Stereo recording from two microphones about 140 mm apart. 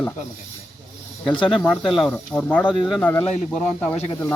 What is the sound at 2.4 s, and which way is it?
Speech, 10° left (ahead or behind).